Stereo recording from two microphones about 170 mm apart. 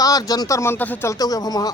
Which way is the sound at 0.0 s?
20° left (ahead or behind).